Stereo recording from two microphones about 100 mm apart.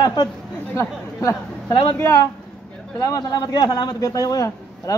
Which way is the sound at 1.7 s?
60° left (ahead or behind).